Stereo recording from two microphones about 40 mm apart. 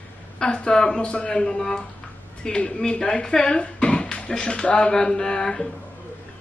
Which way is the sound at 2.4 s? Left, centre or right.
Left.